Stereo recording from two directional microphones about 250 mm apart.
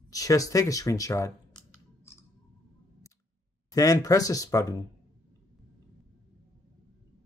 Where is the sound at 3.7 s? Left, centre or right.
Centre.